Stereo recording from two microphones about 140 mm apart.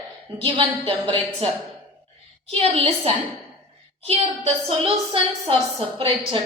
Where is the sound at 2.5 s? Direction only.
45° right (ahead or behind).